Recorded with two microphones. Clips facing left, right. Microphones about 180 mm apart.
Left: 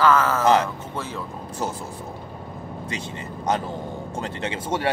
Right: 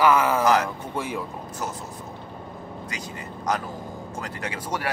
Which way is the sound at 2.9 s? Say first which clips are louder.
Left 3 dB; 25° left (ahead or behind).